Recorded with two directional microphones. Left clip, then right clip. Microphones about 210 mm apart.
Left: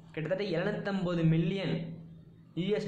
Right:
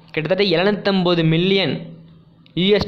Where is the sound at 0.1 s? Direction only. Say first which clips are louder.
Right 15 dB; 40° right (ahead or behind).